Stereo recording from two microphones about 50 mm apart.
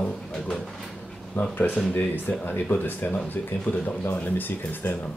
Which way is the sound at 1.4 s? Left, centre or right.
Left.